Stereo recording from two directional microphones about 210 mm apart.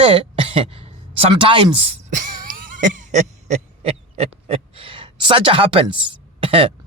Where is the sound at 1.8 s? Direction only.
35° right (ahead or behind).